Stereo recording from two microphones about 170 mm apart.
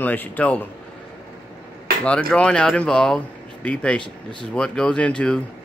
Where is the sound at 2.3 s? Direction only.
5° left (ahead or behind).